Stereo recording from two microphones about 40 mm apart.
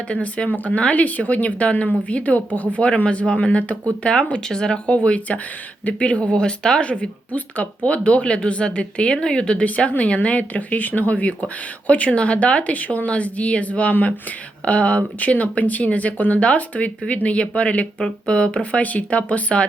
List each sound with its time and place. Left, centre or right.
0.1 s speech: left
4.1 s speech: centre
4.9 s a woman's voice: left
6.4 s a woman's voice: centre
7.3 s a woman's voice: left
9.6 s speech: left